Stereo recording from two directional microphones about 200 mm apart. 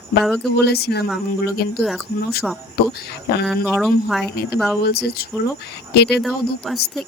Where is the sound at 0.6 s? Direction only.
55° left (ahead or behind).